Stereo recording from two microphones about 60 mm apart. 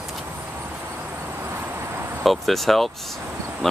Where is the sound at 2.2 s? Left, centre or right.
Centre.